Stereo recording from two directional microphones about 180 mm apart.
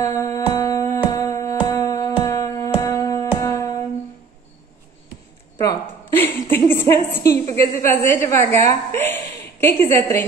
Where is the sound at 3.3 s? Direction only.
15° left (ahead or behind).